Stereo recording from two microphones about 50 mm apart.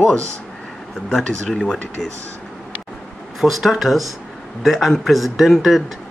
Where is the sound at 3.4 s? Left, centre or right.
Centre.